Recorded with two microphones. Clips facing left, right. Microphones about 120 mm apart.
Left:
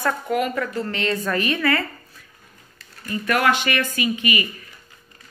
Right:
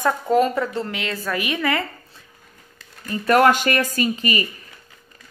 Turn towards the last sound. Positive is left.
turn(degrees=-35)  # may be behind; listen again after turning